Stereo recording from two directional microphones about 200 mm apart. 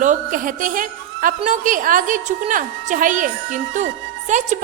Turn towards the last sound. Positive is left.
turn(degrees=-35)  # may be behind; listen again after turning